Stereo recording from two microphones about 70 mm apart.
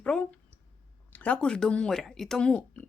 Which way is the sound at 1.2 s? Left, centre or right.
Centre.